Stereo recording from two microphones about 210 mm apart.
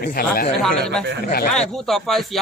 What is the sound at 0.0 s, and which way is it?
Speech, 45° left (ahead or behind).